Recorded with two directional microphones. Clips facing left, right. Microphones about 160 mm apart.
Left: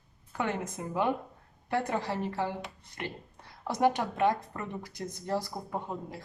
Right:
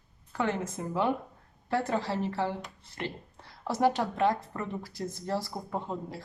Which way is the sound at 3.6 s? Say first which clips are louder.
Right 1 dB; 15° left (ahead or behind).